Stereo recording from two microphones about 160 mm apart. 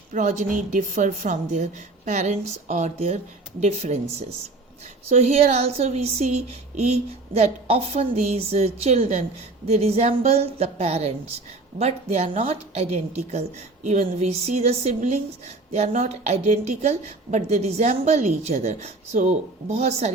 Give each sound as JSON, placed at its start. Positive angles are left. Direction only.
{"t": 0.1, "sound": "speech", "side_deg": -50}
{"t": 5.0, "sound": "speech", "side_deg": -40}